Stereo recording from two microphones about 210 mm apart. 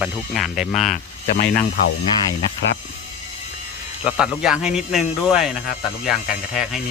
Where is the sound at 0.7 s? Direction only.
35° left (ahead or behind).